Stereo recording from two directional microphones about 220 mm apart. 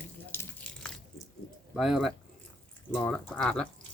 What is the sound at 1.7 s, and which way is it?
Speech, centre (ahead or behind).